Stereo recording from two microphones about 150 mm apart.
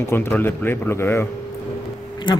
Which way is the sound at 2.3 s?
30° left (ahead or behind).